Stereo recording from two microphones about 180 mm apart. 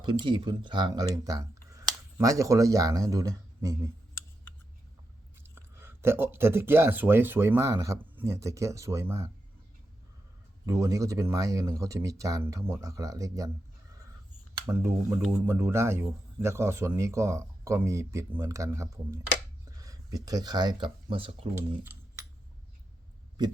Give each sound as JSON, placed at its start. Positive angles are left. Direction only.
{"t": 0.0, "sound": "speech", "side_deg": -25}
{"t": 5.4, "sound": "speech", "side_deg": -10}
{"t": 10.7, "sound": "speech", "side_deg": -20}
{"t": 14.7, "sound": "speech", "side_deg": -15}